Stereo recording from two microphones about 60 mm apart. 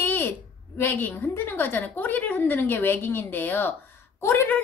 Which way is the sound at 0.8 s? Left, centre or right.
Left.